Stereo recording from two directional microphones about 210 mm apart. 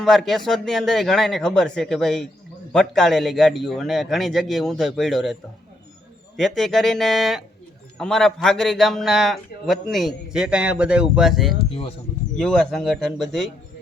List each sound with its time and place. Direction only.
0.0 s a man's voice: centre (ahead or behind)
11.7 s speech: 25° left (ahead or behind)
12.4 s a man's voice: 5° left (ahead or behind)